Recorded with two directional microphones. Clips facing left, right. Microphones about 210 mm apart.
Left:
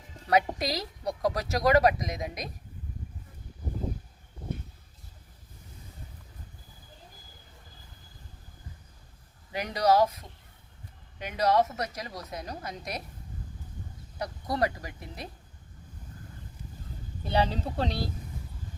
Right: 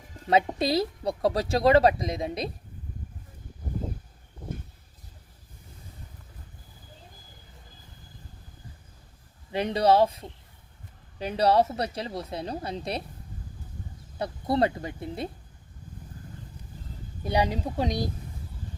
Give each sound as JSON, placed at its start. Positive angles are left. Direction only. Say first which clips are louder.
{"t": 0.6, "sound": "a woman's voice", "louder": "right 7 dB", "side_deg": -30}
{"t": 9.5, "sound": "a woman's voice", "louder": "right 3 dB", "side_deg": -25}
{"t": 14.2, "sound": "a woman's voice", "louder": "right 4 dB", "side_deg": -25}
{"t": 17.2, "sound": "speech", "louder": "right 2 dB", "side_deg": -15}